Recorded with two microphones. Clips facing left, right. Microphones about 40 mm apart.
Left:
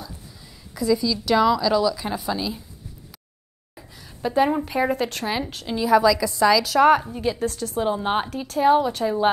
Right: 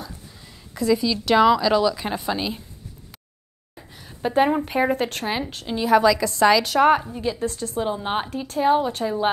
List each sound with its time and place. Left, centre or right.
0.8 s speech: right
3.9 s a sound: right
4.9 s speech: right
5.8 s a woman's voice: right
7.0 s speech: centre
7.3 s speech: centre
7.7 s speech: centre